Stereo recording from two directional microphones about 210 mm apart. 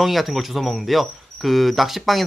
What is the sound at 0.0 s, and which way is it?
Cricket, centre (ahead or behind).